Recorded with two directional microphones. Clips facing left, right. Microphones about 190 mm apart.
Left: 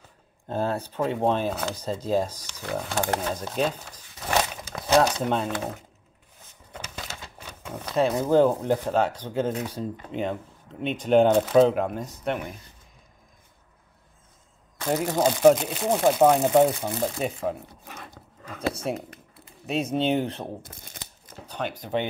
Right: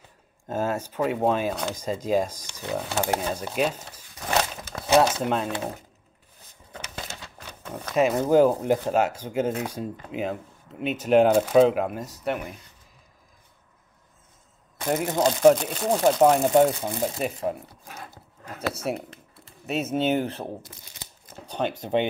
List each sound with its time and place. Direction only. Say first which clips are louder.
0.5 s speech: even; 10° right (ahead or behind)
2.8 s speech: right 1 dB; 5° right (ahead or behind)
4.4 s a sound: even; 5° right (ahead or behind)
7.9 s speech: right 1 dB; 10° right (ahead or behind)
14.9 s speech: even; centre (ahead or behind)
18.0 s a sound: right 1 dB; 5° right (ahead or behind)
18.9 s speech: right 1 dB; centre (ahead or behind)
20.6 s speech: left 3 dB; 50° left (ahead or behind)
21.5 s speech: right 4 dB; 30° right (ahead or behind)